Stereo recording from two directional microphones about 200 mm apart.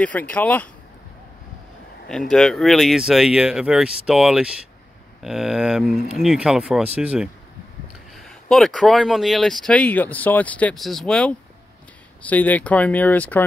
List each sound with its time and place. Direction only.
0.0 s speech: 10° left (ahead or behind)
2.0 s speech: 5° left (ahead or behind)
8.5 s speech: centre (ahead or behind)